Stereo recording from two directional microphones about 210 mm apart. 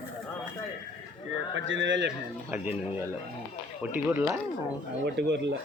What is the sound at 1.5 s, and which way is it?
Speech, 65° right (ahead or behind).